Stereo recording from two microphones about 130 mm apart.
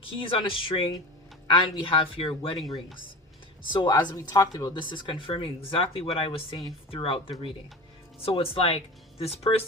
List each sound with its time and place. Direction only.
0.2 s speech: 45° left (ahead or behind)
3.7 s speech: 35° left (ahead or behind)